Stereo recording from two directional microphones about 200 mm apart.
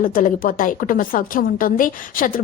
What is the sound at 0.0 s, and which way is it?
A woman's voice, 45° left (ahead or behind).